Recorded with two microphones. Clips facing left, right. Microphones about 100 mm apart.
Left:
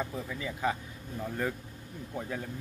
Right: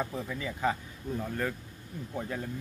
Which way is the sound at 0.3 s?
Centre (ahead or behind).